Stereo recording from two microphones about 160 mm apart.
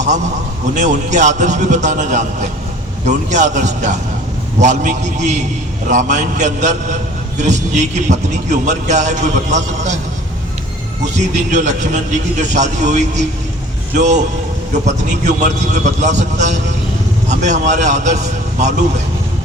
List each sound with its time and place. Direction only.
0.8 s a man's voice: 50° right (ahead or behind)
11.0 s a man's voice: 50° right (ahead or behind)